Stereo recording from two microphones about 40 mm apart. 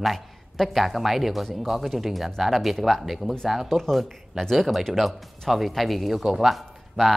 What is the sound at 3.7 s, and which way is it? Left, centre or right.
A man's voice, centre.